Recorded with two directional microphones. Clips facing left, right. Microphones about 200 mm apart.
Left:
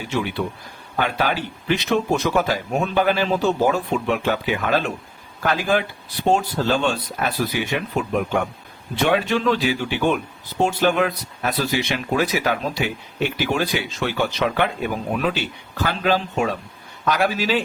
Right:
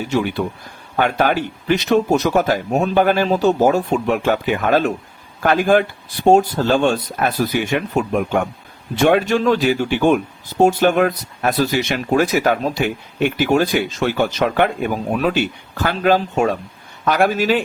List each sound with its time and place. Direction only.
0.0 s speech: 45° right (ahead or behind)